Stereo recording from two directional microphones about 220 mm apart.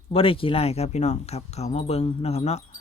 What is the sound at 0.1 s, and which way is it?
Speech, 25° left (ahead or behind).